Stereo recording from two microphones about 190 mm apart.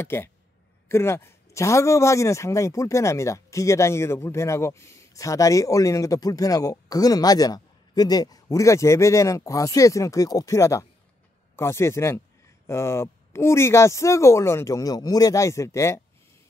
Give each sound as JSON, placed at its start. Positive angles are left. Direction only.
{"t": 0.0, "sound": "a man's voice", "side_deg": 10}